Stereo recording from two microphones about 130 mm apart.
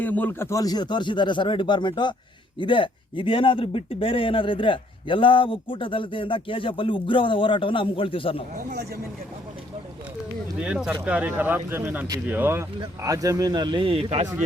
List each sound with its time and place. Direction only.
0.0 s speech: 15° left (ahead or behind); by 8.4 s 45° left (ahead or behind)
10.6 s speech: 5° right (ahead or behind)
13.0 s a man's voice: 25° right (ahead or behind); by 14.3 s 50° right (ahead or behind)